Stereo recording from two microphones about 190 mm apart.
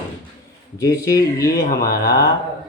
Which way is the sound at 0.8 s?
20° left (ahead or behind).